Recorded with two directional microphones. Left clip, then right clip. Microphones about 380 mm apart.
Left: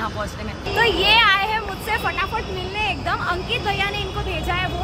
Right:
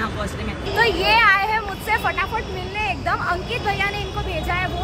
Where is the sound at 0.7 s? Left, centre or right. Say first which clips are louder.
Left 1 dB; centre.